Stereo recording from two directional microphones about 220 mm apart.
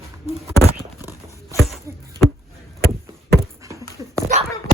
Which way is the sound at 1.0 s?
15° left (ahead or behind).